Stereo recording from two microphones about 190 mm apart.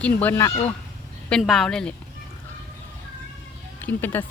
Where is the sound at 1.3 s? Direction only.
Centre (ahead or behind).